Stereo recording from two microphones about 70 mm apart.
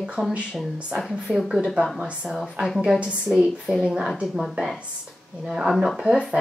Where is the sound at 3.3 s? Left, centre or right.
Centre.